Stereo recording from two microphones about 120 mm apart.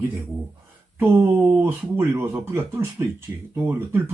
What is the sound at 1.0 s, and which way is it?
Speech, 20° right (ahead or behind).